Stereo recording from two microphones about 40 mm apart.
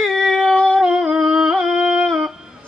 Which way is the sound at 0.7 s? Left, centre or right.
Centre.